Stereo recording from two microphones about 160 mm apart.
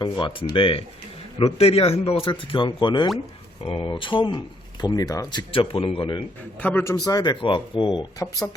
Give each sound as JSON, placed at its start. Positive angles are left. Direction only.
{"t": 0.0, "sound": "speech", "side_deg": 30}
{"t": 6.6, "sound": "a man's voice", "side_deg": 10}
{"t": 6.9, "sound": "speech", "side_deg": 25}